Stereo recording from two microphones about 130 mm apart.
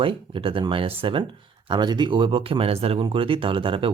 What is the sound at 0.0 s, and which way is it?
Speech, 40° right (ahead or behind).